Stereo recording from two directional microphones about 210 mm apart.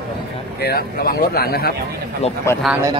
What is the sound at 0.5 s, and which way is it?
Speech, 45° left (ahead or behind).